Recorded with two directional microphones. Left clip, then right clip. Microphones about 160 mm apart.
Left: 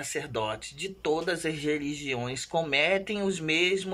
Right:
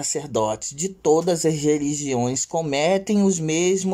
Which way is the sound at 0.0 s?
35° right (ahead or behind).